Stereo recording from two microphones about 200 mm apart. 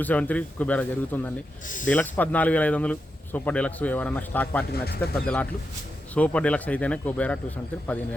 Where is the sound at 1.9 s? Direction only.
10° left (ahead or behind).